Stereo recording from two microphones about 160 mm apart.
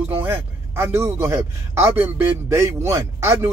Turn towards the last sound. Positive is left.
turn(degrees=-15)  # may be behind; listen again after turning